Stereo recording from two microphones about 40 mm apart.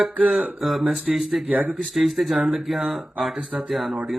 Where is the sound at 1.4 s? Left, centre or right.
Right.